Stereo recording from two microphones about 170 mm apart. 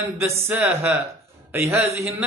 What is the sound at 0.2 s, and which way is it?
Speech, 15° right (ahead or behind).